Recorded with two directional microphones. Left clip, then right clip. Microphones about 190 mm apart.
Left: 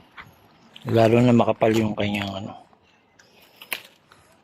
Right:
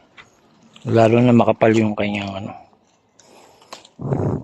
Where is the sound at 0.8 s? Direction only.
5° right (ahead or behind).